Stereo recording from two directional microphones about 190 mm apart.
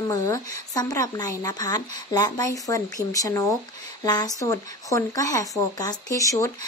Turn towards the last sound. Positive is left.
turn(degrees=15)  # may be behind; listen again after turning